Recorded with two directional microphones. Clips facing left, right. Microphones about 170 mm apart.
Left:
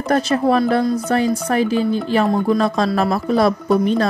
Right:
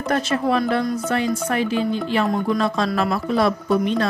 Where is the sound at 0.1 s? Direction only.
40° left (ahead or behind).